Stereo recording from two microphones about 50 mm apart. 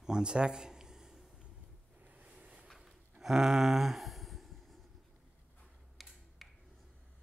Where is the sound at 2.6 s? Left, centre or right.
Centre.